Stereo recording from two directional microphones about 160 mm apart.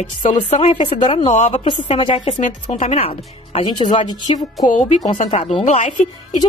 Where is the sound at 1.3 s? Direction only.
45° left (ahead or behind).